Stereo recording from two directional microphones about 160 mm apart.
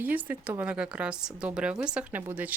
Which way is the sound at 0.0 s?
10° right (ahead or behind).